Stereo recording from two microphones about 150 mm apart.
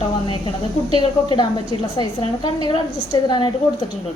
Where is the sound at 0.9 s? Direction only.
30° left (ahead or behind).